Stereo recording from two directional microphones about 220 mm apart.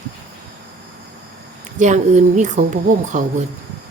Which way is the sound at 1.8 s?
35° right (ahead or behind).